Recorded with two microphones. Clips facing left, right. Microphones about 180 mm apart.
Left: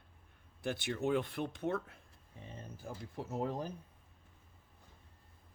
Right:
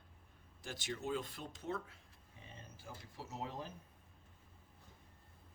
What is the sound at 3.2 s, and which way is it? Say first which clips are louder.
Speech: left 8 dB; 55° left (ahead or behind).